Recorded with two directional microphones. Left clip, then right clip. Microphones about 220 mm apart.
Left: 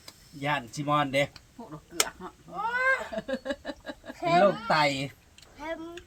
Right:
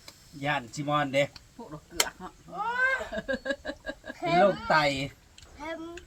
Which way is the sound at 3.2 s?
5° right (ahead or behind).